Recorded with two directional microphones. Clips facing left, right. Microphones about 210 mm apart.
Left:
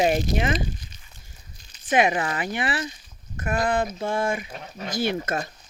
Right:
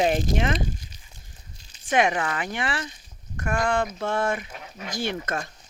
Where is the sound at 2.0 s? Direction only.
5° left (ahead or behind).